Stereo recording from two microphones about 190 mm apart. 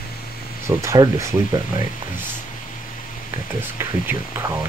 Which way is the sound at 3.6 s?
10° right (ahead or behind).